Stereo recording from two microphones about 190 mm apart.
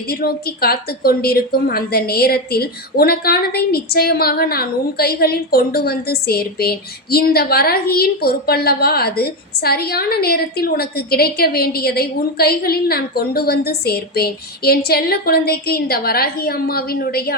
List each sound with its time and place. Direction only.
0.1 s a woman's voice: 55° left (ahead or behind)